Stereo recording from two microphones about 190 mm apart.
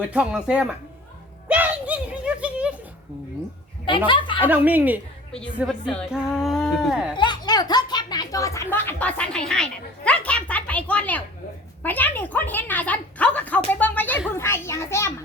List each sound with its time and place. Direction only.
0.0 s speech: 5° right (ahead or behind)
1.5 s a sound: 10° right (ahead or behind)
3.8 s speech: 25° left (ahead or behind)
4.4 s speech: 10° right (ahead or behind)
7.2 s a woman's voice: 25° left (ahead or behind)
13.7 s a sound: 10° left (ahead or behind)
14.3 s a woman's voice: 15° left (ahead or behind)